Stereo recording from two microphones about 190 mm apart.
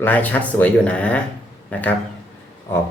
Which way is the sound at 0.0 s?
10° left (ahead or behind).